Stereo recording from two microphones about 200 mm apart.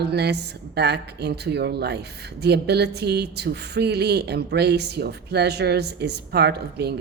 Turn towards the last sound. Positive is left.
turn(degrees=-55)  # may be behind; listen again after turning